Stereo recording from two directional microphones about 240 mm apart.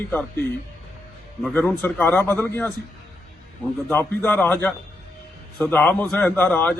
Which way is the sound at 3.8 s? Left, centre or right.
Centre.